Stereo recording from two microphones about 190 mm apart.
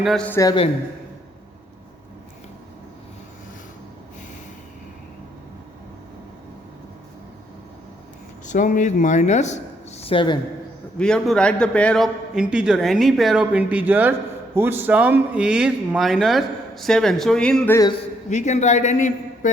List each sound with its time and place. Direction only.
0.0 s a man's voice: 5° left (ahead or behind)
0.3 s a man's voice: 20° left (ahead or behind)
8.4 s speech: 40° left (ahead or behind)
10.9 s a man's voice: 5° left (ahead or behind)
18.3 s a man's voice: 40° left (ahead or behind)